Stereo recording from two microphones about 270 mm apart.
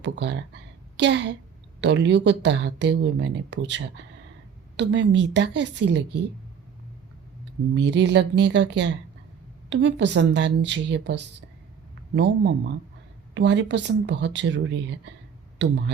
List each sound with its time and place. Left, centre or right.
0.0 s speech: right
7.7 s speech: right